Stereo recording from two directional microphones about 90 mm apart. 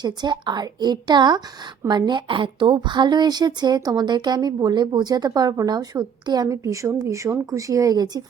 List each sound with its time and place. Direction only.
0.0 s a woman's voice: 55° right (ahead or behind)